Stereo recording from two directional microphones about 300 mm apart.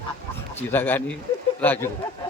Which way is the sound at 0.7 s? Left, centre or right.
Centre.